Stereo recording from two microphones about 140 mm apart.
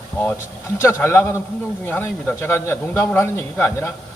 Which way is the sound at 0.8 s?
15° left (ahead or behind).